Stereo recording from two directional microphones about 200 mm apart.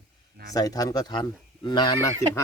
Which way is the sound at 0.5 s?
20° left (ahead or behind).